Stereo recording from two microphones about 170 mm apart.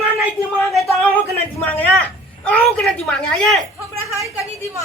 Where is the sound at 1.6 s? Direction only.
10° left (ahead or behind).